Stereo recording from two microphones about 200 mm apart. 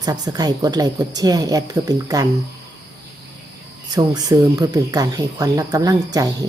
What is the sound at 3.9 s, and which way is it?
Speech, 20° right (ahead or behind).